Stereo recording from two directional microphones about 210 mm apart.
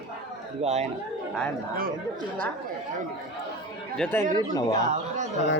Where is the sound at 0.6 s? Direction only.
30° right (ahead or behind).